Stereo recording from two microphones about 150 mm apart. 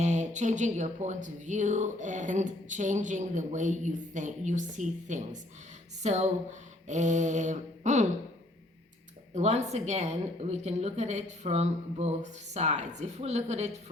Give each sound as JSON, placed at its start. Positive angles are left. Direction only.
{"t": 0.0, "sound": "speech", "side_deg": -50}
{"t": 6.0, "sound": "a sound", "side_deg": -50}
{"t": 9.3, "sound": "a woman's voice", "side_deg": -45}